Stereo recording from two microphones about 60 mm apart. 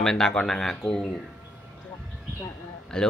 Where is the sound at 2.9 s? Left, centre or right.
Centre.